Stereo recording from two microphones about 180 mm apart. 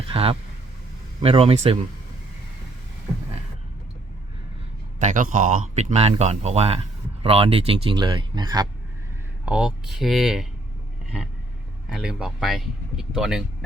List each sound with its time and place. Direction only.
0.1 s speech: 30° right (ahead or behind)
4.9 s speech: 45° right (ahead or behind); by 8.6 s 25° right (ahead or behind)
9.5 s speech: 5° right (ahead or behind)
11.9 s speech: 5° right (ahead or behind)